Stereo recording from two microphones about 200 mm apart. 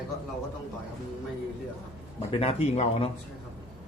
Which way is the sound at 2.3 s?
30° left (ahead or behind).